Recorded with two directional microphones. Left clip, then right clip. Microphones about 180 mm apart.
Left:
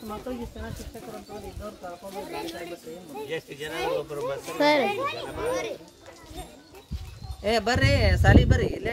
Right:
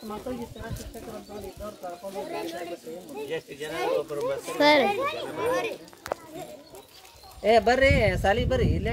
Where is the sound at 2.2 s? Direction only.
40° left (ahead or behind).